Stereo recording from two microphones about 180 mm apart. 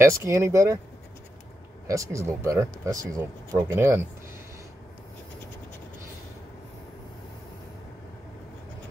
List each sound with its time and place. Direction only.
0.0 s speech: 15° right (ahead or behind)
1.9 s speech: 15° right (ahead or behind)